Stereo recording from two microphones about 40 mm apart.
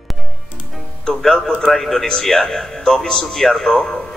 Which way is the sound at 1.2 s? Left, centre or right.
Centre.